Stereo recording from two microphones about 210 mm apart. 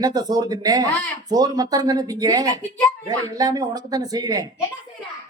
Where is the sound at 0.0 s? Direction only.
20° right (ahead or behind).